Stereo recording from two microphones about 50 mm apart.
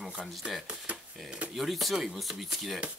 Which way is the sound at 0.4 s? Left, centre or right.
Right.